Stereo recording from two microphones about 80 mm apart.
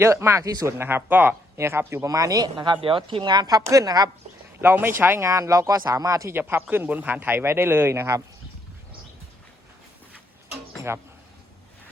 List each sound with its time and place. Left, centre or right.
0.0 s speech: right
0.4 s speech: right
0.8 s speech: right
2.0 s speech: right
2.9 s speech: right
4.6 s speech: right
6.5 s speech: right
10.9 s speech: right